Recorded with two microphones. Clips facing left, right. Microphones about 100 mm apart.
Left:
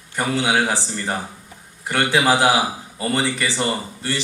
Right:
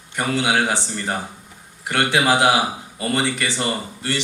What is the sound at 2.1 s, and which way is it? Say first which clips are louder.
A man's voice: even; 30° left (ahead or behind).